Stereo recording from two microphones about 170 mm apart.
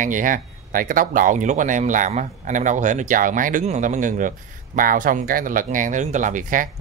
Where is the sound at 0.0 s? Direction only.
50° right (ahead or behind).